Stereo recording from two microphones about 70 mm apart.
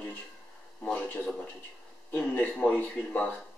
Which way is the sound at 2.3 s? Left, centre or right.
Left.